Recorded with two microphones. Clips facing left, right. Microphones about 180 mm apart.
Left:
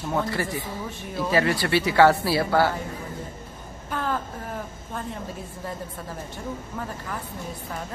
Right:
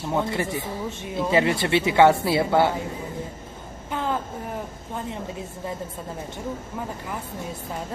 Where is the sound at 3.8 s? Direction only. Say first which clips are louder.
Right 1 dB; 20° right (ahead or behind).